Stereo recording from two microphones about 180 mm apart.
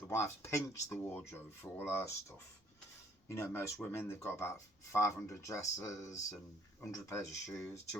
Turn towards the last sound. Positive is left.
turn(degrees=15)  # may be behind; listen again after turning